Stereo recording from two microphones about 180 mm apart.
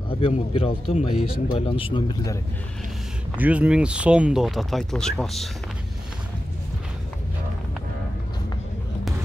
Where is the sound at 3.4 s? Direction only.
5° right (ahead or behind).